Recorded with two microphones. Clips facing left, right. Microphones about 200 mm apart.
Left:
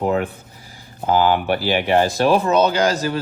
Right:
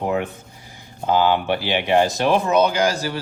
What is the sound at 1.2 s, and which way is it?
Speech, 20° right (ahead or behind).